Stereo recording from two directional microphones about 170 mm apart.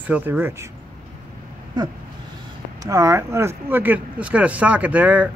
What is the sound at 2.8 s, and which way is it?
Speech, 20° right (ahead or behind).